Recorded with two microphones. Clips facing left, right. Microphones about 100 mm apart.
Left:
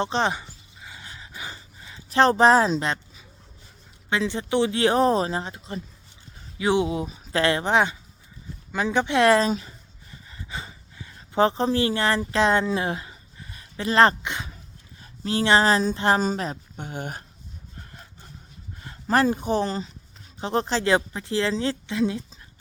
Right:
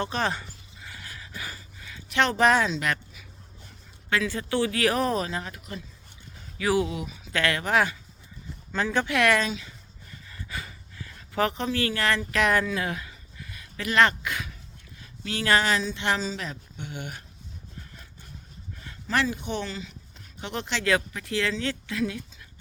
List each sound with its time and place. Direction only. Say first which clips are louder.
0.0 s a sound: left 4 dB; 25° left (ahead or behind)
4.1 s speech: left 3 dB; 25° left (ahead or behind)
9.1 s speech: left 6 dB; 30° left (ahead or behind)
10.2 s a sound: left 2 dB; 25° left (ahead or behind)
15.4 s speech: left 4 dB; 30° left (ahead or behind)
18.8 s speech: left 6 dB; 35° left (ahead or behind)